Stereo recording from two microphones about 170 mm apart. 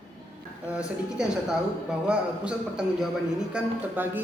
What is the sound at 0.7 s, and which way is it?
A man's voice, 5° right (ahead or behind).